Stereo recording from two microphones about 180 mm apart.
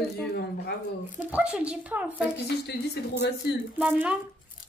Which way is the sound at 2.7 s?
65° left (ahead or behind).